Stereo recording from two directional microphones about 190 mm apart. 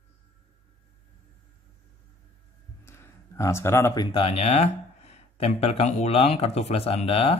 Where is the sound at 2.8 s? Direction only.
15° left (ahead or behind).